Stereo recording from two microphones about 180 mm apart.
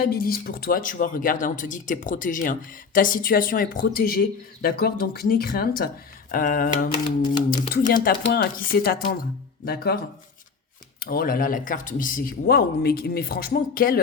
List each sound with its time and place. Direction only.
0.0 s speech: 55° left (ahead or behind)
11.0 s speech: 55° left (ahead or behind)